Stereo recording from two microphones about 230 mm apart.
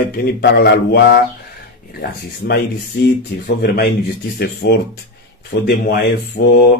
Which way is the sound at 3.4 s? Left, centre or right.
Left.